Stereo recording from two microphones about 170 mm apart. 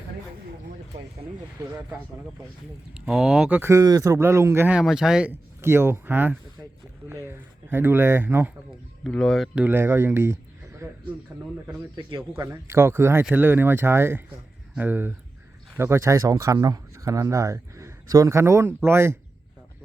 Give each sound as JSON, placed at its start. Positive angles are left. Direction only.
{"t": 2.9, "sound": "speech", "side_deg": -5}
{"t": 9.0, "sound": "speech", "side_deg": 5}
{"t": 9.6, "sound": "speech", "side_deg": -15}
{"t": 11.9, "sound": "speech", "side_deg": -20}